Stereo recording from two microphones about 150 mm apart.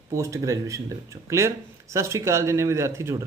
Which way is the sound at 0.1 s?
20° right (ahead or behind).